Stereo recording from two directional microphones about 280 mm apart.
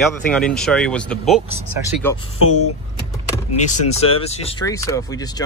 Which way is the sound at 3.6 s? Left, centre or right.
Left.